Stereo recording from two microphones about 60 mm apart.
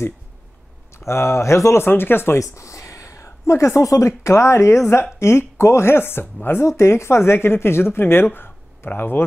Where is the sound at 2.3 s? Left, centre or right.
Left.